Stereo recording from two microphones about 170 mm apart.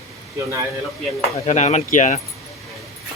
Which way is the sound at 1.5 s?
40° left (ahead or behind).